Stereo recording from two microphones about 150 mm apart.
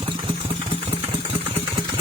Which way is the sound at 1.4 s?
35° right (ahead or behind).